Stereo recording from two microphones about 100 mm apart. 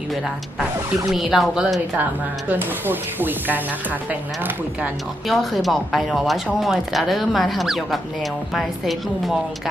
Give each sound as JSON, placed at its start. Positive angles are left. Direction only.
{"t": 1.1, "sound": "speech", "side_deg": 0}
{"t": 2.5, "sound": "speech", "side_deg": -20}
{"t": 5.3, "sound": "speech", "side_deg": 0}